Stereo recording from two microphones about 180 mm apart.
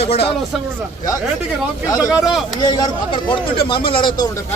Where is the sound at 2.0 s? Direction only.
5° right (ahead or behind).